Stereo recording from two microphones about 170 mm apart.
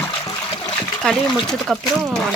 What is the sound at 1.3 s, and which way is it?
Speech, centre (ahead or behind).